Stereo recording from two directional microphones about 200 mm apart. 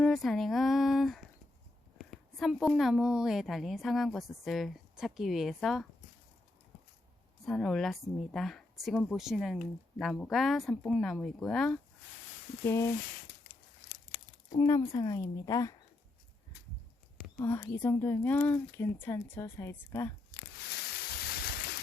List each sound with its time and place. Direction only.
0.0 s a woman's voice: centre (ahead or behind)
7.4 s a woman's voice: centre (ahead or behind)
14.1 s a sound: 40° left (ahead or behind)
14.6 s speech: 15° left (ahead or behind)
17.4 s speech: 10° left (ahead or behind)
21.3 s a sound: 50° left (ahead or behind)